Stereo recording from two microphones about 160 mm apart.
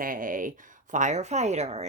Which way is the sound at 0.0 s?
60° right (ahead or behind).